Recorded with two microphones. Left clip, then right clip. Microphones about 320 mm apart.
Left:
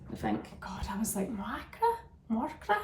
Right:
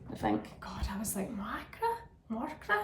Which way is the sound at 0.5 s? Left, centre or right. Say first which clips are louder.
Left 3 dB; centre.